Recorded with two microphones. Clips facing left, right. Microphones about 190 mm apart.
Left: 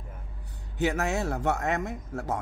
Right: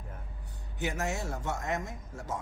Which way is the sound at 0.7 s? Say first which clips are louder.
Left 6 dB; 65° left (ahead or behind).